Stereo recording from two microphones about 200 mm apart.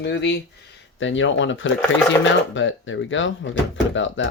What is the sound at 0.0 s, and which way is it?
Speech, 60° left (ahead or behind).